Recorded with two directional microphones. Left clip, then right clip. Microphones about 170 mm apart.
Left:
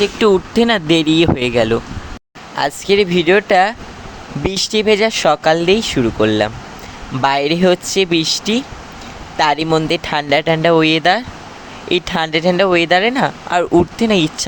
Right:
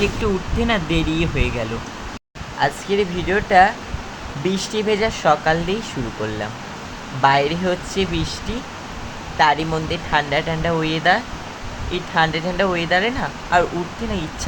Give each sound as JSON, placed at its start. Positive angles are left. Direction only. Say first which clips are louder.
{"t": 0.0, "sound": "speech", "louder": "left 8 dB", "side_deg": 70}
{"t": 7.2, "sound": "speech", "louder": "left 2 dB", "side_deg": 75}